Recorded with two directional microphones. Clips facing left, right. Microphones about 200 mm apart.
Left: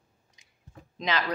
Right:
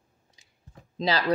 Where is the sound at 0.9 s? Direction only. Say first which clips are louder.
Right 4 dB; 35° right (ahead or behind).